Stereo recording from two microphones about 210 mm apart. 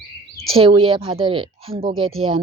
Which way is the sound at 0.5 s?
25° right (ahead or behind).